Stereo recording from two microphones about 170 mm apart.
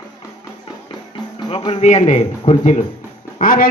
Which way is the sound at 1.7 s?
40° left (ahead or behind).